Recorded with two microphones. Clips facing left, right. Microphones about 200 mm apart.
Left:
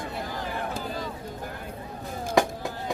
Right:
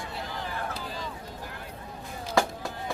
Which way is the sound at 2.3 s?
15° left (ahead or behind).